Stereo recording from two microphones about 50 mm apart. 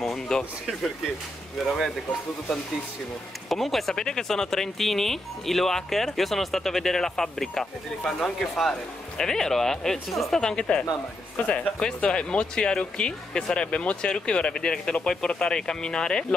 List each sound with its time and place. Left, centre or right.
0.0 s a sound: centre
1.6 s speech: centre
3.4 s speech: centre